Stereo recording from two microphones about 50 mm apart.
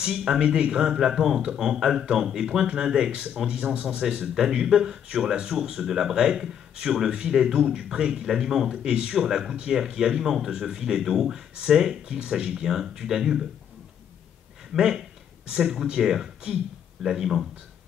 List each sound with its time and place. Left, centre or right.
0.0 s speech: centre
14.7 s speech: centre